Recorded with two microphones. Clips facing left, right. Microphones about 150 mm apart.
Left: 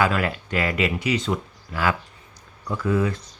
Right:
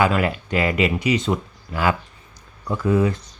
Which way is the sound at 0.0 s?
20° right (ahead or behind).